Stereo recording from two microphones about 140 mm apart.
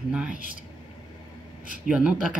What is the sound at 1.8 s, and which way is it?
Speech, 5° right (ahead or behind).